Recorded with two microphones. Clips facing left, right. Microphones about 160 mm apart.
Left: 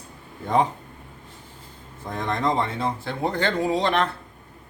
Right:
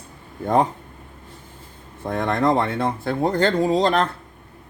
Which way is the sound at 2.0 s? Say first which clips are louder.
Right 5 dB; 60° right (ahead or behind).